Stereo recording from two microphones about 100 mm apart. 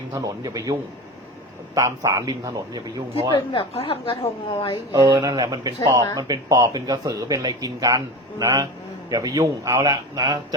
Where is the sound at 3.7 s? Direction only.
80° left; by 4.2 s 60° left (ahead or behind).